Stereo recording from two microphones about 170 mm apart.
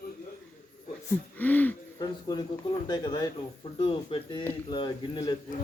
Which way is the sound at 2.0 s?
25° left (ahead or behind).